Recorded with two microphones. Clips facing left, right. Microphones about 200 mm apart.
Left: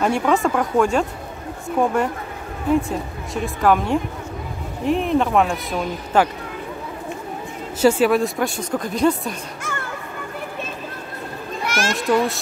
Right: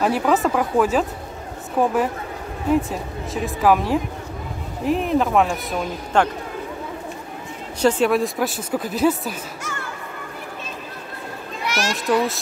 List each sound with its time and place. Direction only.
0.0 s speech: 5° right (ahead or behind)
7.8 s speech: 5° left (ahead or behind)
11.6 s children playing: 50° left (ahead or behind)
11.9 s speech: centre (ahead or behind)